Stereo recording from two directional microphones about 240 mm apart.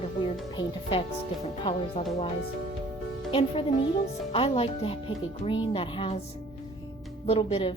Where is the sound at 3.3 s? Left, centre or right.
Left.